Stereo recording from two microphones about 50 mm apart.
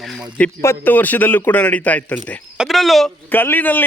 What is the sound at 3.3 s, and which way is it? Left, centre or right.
Speech, left.